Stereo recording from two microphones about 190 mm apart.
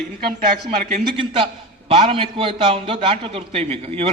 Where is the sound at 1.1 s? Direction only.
25° right (ahead or behind).